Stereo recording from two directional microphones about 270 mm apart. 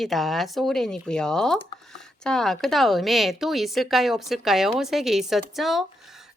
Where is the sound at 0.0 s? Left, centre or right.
Centre.